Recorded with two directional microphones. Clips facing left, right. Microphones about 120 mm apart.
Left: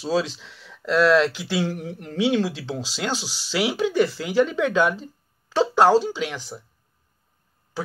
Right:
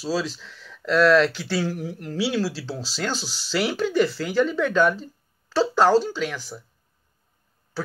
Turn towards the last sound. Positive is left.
turn(degrees=15)  # may be behind; listen again after turning